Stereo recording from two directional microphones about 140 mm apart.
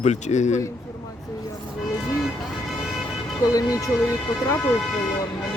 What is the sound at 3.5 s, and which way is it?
Speech, 25° left (ahead or behind).